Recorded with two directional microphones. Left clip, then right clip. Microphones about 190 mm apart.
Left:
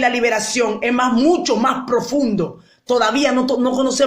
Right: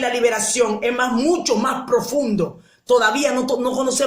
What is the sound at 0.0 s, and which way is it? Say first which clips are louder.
Speech: left 2 dB; 35° left (ahead or behind).